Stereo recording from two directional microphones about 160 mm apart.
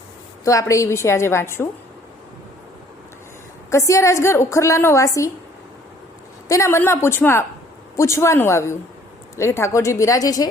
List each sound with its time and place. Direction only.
0.4 s a woman's voice: 20° left (ahead or behind)
3.7 s a woman's voice: 20° left (ahead or behind)
6.5 s a woman's voice: 15° left (ahead or behind)